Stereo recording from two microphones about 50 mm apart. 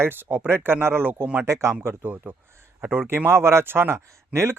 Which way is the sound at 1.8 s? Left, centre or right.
Right.